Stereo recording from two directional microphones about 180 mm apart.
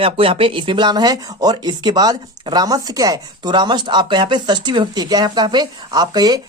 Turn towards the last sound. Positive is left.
turn(degrees=-20)  # may be behind; listen again after turning